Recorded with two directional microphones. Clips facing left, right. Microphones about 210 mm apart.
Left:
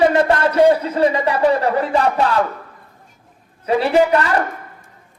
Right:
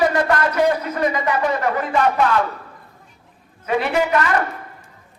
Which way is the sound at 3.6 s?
35° left (ahead or behind).